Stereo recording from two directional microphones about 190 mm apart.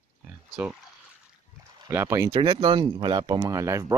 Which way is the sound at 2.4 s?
25° right (ahead or behind).